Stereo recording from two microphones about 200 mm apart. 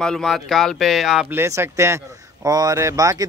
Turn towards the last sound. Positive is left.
turn(degrees=-15)  # may be behind; listen again after turning